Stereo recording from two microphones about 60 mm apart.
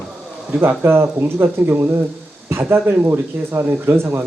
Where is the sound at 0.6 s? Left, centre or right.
Right.